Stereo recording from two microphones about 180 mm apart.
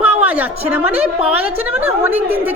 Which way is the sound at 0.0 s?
10° right (ahead or behind).